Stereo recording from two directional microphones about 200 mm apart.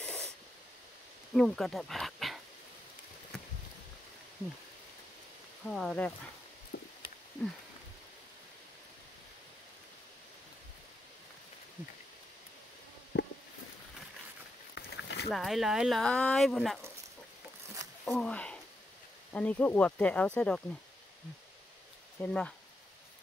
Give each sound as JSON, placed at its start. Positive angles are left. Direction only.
{"t": 0.0, "sound": "spray", "side_deg": 5}
{"t": 1.3, "sound": "speech", "side_deg": 0}
{"t": 5.7, "sound": "speech", "side_deg": 0}
{"t": 6.7, "sound": "a sound", "side_deg": 65}
{"t": 13.1, "sound": "a sound", "side_deg": 60}
{"t": 14.8, "sound": "a sound", "side_deg": 60}
{"t": 15.2, "sound": "speech", "side_deg": 0}
{"t": 18.0, "sound": "speech", "side_deg": 5}
{"t": 22.2, "sound": "speech", "side_deg": 5}